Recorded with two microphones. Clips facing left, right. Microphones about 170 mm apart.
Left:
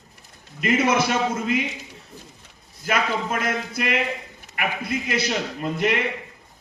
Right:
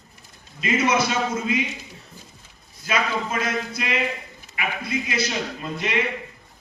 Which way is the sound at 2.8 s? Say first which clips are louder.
Left 1 dB; 55° left (ahead or behind).